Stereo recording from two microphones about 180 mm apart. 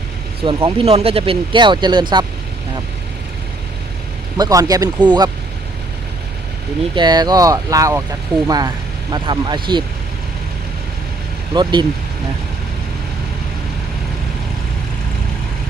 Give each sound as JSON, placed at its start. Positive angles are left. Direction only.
{"t": 0.4, "sound": "speech", "side_deg": -30}
{"t": 4.4, "sound": "speech", "side_deg": -20}
{"t": 6.9, "sound": "speech", "side_deg": -25}
{"t": 11.5, "sound": "speech", "side_deg": -25}